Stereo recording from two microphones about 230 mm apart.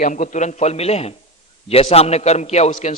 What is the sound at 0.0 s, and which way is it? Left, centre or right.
A man's voice, left.